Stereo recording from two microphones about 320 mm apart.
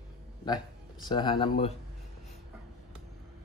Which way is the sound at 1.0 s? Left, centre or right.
Centre.